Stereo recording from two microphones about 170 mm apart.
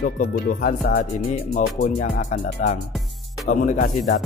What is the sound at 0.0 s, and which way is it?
Speech, 60° left (ahead or behind).